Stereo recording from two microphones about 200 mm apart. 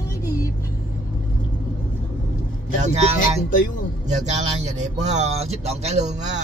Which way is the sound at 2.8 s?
35° right (ahead or behind).